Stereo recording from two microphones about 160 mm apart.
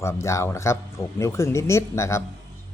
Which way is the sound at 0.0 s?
15° left (ahead or behind).